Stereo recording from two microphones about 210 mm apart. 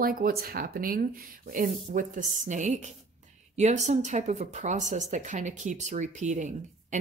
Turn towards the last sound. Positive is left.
turn(degrees=-35)  # may be behind; listen again after turning